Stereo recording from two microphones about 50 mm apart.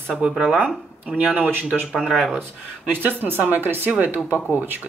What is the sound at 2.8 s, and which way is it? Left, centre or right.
Speech, right.